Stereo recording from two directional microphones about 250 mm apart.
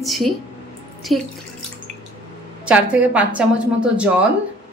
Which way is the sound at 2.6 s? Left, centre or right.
Centre.